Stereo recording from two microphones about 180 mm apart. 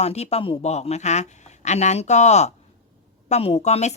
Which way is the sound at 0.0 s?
35° left (ahead or behind).